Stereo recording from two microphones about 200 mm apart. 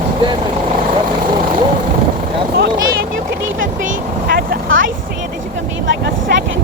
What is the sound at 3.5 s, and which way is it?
Vehicle, 40° right (ahead or behind).